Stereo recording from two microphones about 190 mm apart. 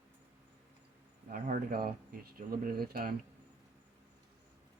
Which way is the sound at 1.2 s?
50° right (ahead or behind).